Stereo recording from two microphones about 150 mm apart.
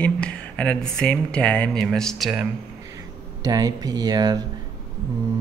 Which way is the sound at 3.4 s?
25° right (ahead or behind).